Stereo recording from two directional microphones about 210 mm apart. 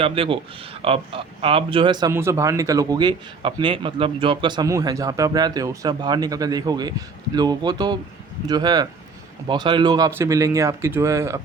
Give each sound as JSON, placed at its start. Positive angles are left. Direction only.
{"t": 0.0, "sound": "a man's voice", "side_deg": -25}